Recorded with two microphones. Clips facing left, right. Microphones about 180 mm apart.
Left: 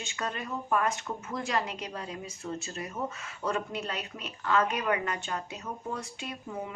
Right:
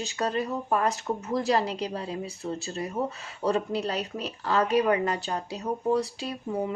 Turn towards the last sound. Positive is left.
turn(degrees=-35)  # may be behind; listen again after turning